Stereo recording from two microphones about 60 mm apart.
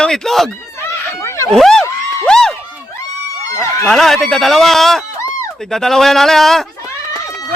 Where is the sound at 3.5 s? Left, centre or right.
Left.